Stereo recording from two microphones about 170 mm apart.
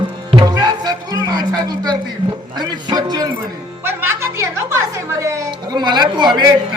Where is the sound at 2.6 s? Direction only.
25° right (ahead or behind).